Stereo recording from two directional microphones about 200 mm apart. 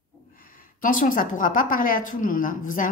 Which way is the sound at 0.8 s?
40° left (ahead or behind).